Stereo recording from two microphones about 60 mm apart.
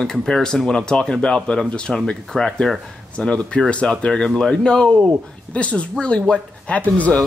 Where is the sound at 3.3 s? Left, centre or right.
Centre.